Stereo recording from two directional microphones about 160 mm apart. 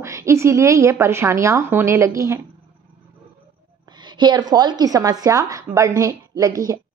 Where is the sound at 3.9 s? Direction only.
30° right (ahead or behind).